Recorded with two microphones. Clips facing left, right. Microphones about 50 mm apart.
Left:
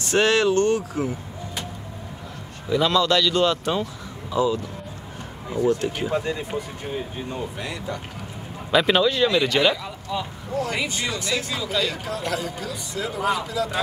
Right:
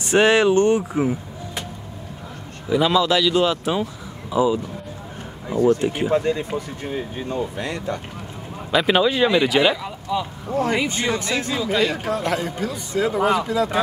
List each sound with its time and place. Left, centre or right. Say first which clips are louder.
0.0 s speech: right 3 dB; centre
2.7 s speech: right 2 dB; centre
5.8 s speech: right 4 dB; right
6.8 s speech: right 2 dB; right
8.7 s speech: right 1 dB; centre
10.5 s a man's voice: right 5 dB; right